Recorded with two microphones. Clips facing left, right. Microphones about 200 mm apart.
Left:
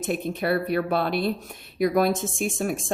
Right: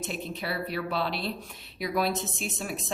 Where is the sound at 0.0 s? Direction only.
55° left (ahead or behind).